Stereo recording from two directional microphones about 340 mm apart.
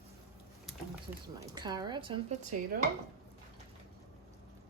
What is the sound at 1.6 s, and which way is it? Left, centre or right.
Speech, centre.